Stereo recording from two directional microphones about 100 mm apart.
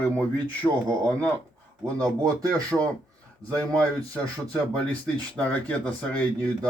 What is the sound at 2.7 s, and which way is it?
Speech, 5° right (ahead or behind).